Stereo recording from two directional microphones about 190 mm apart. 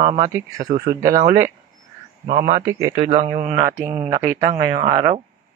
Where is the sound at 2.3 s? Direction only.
50° right (ahead or behind).